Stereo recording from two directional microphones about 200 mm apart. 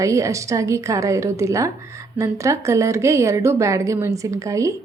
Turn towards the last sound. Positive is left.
turn(degrees=-15)  # may be behind; listen again after turning